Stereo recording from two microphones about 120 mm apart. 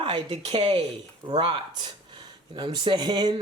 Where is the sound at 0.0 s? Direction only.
45° right (ahead or behind).